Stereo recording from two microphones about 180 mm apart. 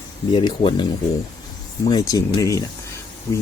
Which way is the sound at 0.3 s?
25° left (ahead or behind).